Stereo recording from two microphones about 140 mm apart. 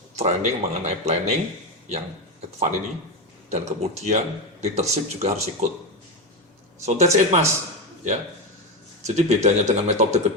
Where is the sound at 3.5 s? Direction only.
55° right (ahead or behind).